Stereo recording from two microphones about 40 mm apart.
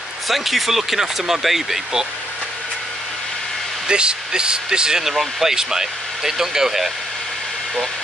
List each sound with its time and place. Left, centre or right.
0.3 s speech: centre
3.8 s speech: right
5.0 s speech: centre